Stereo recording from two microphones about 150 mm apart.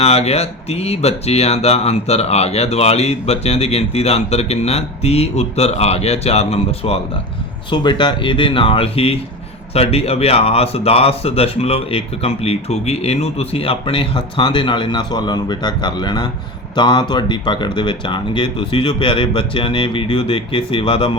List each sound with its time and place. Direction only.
0.0 s speech: 45° left (ahead or behind)